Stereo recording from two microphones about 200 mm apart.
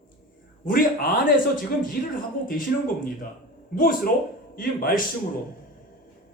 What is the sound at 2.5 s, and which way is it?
A man's voice, 45° left (ahead or behind).